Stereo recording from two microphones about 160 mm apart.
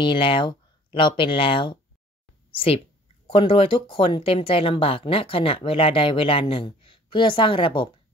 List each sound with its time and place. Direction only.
0.0 s speech: 30° left (ahead or behind)